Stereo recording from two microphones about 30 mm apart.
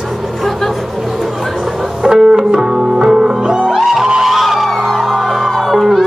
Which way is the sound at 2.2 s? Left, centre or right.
Centre.